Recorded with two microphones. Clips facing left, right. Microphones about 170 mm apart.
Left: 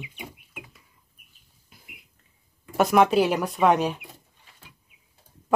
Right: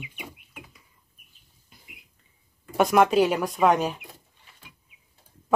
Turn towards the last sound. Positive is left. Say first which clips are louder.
# left 1 dB
turn(degrees=0)  # may be behind; listen again after turning